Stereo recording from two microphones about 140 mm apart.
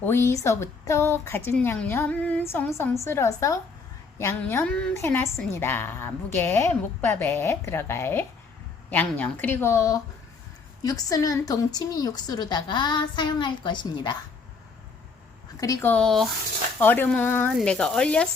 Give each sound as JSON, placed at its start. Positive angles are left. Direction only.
{"t": 0.0, "sound": "a woman's voice", "side_deg": 15}
{"t": 15.6, "sound": "a woman's voice", "side_deg": 25}
{"t": 15.9, "sound": "speech", "side_deg": 5}
{"t": 16.8, "sound": "a woman's voice", "side_deg": 15}